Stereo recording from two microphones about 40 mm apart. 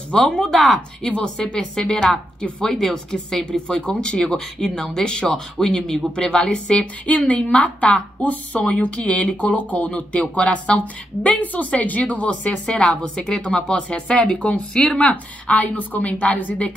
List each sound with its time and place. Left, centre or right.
0.1 s speech: centre
1.0 s speech: left
7.1 s a woman's voice: left
14.7 s speech: centre
15.0 s a woman's voice: left